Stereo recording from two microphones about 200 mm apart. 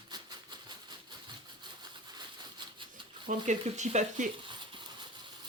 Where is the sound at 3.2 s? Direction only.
35° right (ahead or behind).